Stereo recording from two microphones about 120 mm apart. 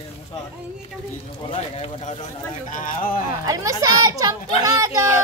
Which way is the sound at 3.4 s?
30° right (ahead or behind).